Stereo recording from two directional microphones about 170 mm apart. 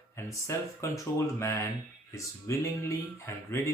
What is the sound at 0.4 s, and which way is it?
Speech, 15° left (ahead or behind).